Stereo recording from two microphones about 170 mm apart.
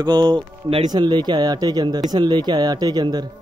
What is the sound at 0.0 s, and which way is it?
Speech, 25° right (ahead or behind).